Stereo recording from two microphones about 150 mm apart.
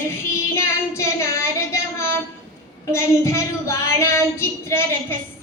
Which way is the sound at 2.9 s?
20° left (ahead or behind).